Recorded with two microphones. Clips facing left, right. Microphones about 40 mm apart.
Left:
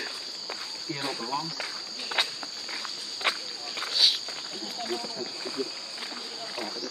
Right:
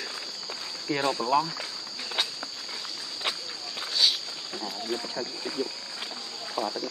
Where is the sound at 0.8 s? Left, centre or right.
Right.